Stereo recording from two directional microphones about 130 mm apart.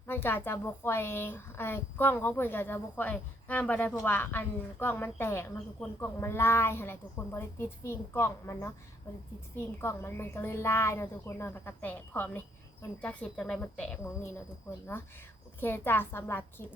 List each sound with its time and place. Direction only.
0.1 s a woman's voice: 15° left (ahead or behind)
9.8 s a woman's voice: 20° left (ahead or behind)
15.6 s speech: 15° left (ahead or behind)